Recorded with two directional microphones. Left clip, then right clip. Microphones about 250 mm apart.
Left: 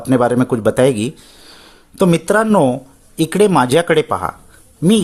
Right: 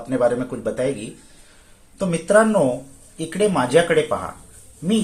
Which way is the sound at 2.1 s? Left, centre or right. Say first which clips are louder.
Left 1 dB; left.